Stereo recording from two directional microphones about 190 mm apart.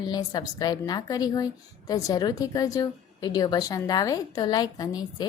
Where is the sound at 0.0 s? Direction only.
20° left (ahead or behind).